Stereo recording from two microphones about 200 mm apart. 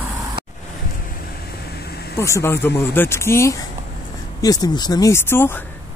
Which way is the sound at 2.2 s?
15° left (ahead or behind).